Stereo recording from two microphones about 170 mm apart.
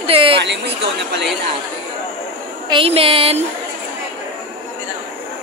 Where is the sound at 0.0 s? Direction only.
30° right (ahead or behind).